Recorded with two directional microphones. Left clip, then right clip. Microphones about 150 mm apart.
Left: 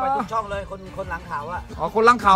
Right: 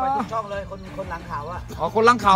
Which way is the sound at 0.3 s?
70° left (ahead or behind).